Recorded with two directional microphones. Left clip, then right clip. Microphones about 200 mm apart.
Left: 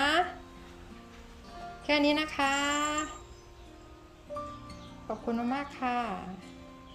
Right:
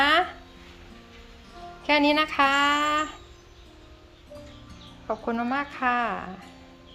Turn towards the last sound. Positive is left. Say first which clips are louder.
# right 7 dB
turn(degrees=5)  # may be behind; listen again after turning